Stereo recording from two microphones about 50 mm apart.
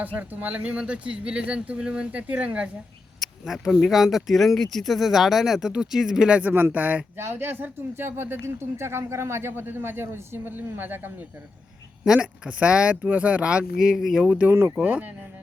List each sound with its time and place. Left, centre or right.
0.0 s speech: right
3.2 s speech: centre
6.5 s speech: right
7.2 s a woman's voice: right
12.0 s speech: centre
14.2 s speech: right